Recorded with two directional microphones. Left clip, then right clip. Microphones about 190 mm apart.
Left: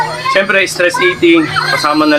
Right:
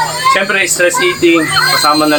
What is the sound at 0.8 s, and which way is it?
Speech, 15° left (ahead or behind).